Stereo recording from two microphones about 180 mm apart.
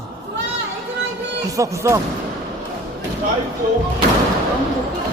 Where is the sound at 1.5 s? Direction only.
15° right (ahead or behind).